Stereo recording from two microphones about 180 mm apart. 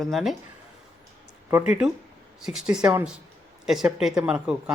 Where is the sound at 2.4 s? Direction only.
5° right (ahead or behind).